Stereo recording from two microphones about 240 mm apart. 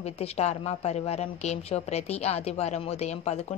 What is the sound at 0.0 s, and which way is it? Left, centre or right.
Speech, left.